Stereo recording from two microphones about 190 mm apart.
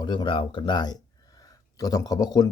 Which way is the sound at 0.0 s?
25° left (ahead or behind).